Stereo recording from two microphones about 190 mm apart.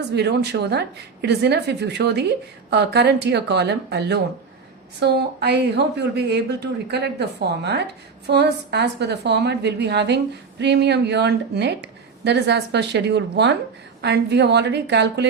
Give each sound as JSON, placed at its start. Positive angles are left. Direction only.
{"t": 0.1, "sound": "speech", "side_deg": -60}